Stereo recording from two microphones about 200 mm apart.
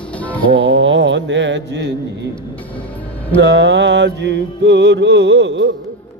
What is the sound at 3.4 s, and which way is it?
Music, 60° right (ahead or behind).